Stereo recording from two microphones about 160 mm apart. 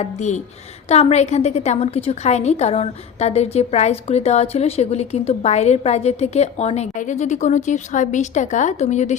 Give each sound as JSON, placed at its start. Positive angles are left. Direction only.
{"t": 0.0, "sound": "a woman's voice", "side_deg": 45}